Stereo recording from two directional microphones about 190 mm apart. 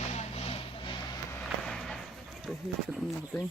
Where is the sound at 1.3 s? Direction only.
5° left (ahead or behind).